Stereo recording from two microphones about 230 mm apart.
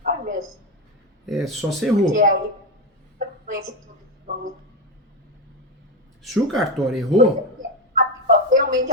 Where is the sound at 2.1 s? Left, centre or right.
Right.